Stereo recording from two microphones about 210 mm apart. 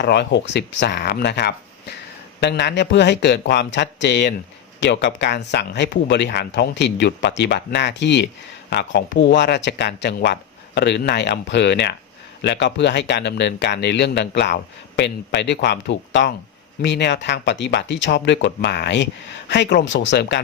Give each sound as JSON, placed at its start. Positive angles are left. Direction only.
{"t": 0.0, "sound": "speech", "side_deg": 55}